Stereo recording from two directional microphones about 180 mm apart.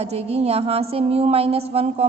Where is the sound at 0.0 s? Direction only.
35° right (ahead or behind).